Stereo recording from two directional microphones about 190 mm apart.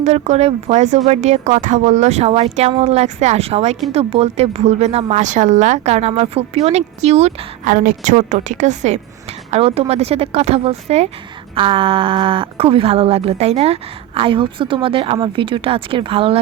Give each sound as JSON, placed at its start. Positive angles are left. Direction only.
{"t": 0.0, "sound": "speech", "side_deg": -35}